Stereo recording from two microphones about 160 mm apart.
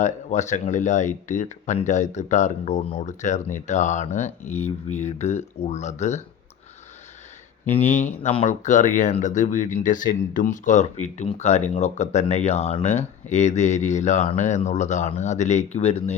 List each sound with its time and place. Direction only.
0.0 s speech: 50° left (ahead or behind)
7.6 s speech: 50° left (ahead or behind)